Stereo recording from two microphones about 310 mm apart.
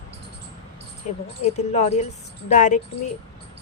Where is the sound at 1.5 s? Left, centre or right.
Left.